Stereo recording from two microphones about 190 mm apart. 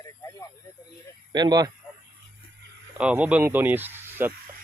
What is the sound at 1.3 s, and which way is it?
Speech, 20° right (ahead or behind).